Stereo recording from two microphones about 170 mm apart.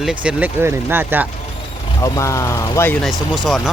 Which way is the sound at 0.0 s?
5° right (ahead or behind).